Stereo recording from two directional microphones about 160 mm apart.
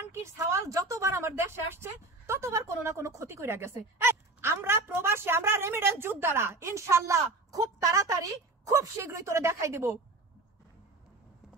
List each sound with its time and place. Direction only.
0.0 s a woman's voice: 15° right (ahead or behind)